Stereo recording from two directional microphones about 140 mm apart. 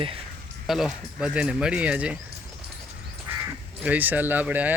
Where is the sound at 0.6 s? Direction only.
Centre (ahead or behind).